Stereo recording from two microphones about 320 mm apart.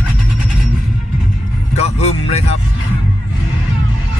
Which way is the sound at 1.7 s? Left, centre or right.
Centre.